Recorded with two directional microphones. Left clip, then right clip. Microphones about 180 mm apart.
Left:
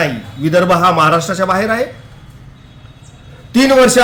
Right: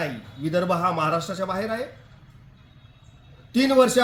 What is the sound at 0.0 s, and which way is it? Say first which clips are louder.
A man's voice: left 13 dB; centre (ahead or behind).